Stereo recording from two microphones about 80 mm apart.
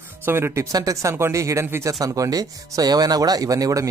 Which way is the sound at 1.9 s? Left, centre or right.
Right.